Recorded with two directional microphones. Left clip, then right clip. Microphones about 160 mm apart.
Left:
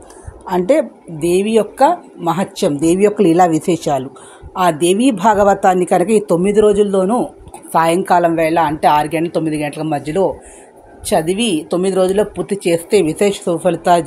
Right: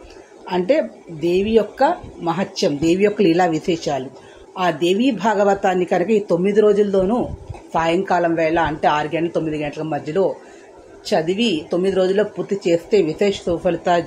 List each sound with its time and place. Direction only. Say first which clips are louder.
0.5 s speech: left 4 dB; 40° left (ahead or behind)